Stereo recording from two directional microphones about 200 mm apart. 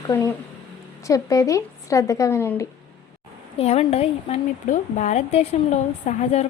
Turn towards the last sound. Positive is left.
turn(degrees=35)  # may be behind; listen again after turning